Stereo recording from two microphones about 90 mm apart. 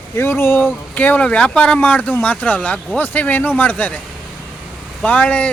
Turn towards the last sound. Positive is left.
turn(degrees=15)  # may be behind; listen again after turning